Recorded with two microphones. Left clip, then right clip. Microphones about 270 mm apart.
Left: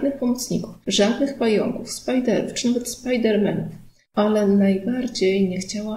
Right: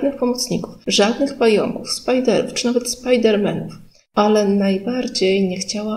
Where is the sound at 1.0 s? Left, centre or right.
Right.